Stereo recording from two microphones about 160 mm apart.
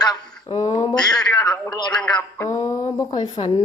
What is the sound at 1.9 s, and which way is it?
Speech, 5° left (ahead or behind).